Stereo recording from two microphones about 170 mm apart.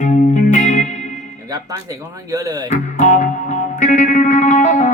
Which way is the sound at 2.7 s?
45° left (ahead or behind).